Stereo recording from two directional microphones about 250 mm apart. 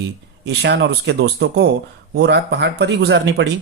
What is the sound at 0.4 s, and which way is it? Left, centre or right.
Speech, right.